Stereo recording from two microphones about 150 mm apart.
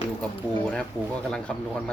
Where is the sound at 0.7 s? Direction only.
5° left (ahead or behind).